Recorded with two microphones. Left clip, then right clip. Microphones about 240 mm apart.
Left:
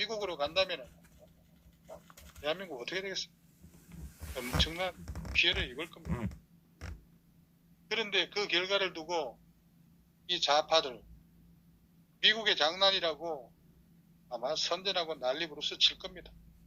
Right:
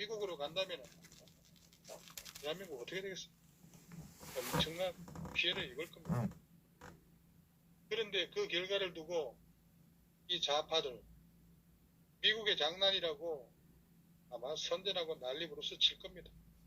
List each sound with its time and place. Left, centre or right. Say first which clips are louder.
0.0 s a man's voice: left 7 dB; left
2.4 s a man's voice: left 8 dB; left
4.5 s a man's voice: left 5 dB; left
7.9 s a man's voice: left 6 dB; left
12.2 s a man's voice: left 7 dB; left